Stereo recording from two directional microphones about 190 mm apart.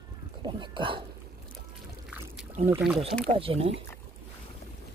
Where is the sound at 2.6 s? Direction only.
35° right (ahead or behind).